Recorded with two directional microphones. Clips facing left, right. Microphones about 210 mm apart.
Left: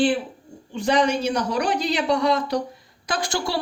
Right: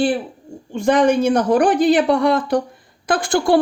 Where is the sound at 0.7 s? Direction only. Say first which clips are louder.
Right 6 dB; 50° right (ahead or behind).